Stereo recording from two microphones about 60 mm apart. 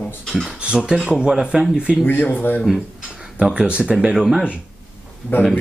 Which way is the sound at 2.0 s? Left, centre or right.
Left.